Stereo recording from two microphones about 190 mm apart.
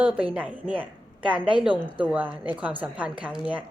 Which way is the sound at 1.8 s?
10° right (ahead or behind).